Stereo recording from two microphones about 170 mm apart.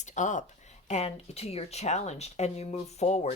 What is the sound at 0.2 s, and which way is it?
Speech, 45° left (ahead or behind).